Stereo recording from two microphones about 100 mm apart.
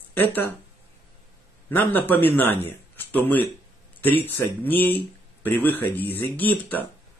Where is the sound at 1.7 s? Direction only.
20° left (ahead or behind).